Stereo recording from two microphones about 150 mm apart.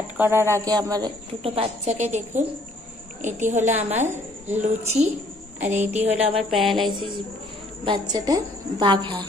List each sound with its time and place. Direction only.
0.2 s a man's voice: 15° right (ahead or behind)
1.4 s a woman's voice: 40° right (ahead or behind)